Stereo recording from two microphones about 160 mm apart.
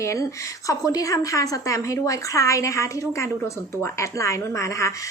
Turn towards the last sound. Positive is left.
turn(degrees=20)  # may be behind; listen again after turning